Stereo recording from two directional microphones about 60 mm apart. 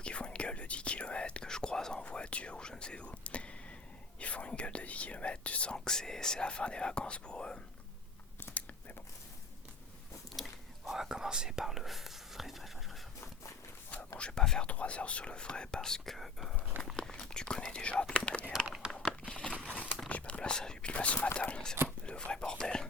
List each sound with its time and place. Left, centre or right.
0.0 s whispering: centre
4.2 s speech: left
10.3 s whispering: centre
14.2 s whispering: centre
14.7 s speech: left; by 16.6 s centre
17.0 s whispering: centre
18.8 s a sound: centre
19.2 s a sound: centre
20.1 s whispering: left
21.3 s speech: centre
21.8 s whispering: centre